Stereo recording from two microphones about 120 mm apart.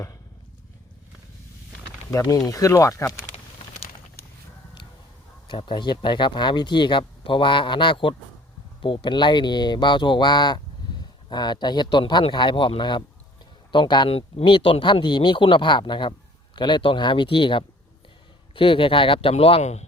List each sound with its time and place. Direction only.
2.0 s speech: 30° left (ahead or behind)
5.5 s speech: 40° left (ahead or behind)
14.1 s speech: 55° left (ahead or behind)